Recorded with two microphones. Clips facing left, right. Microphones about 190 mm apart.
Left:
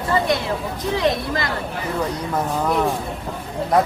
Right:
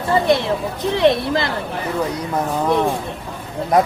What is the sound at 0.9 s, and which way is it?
Speech, 30° right (ahead or behind).